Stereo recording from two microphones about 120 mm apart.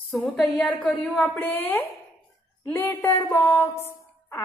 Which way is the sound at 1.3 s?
15° left (ahead or behind).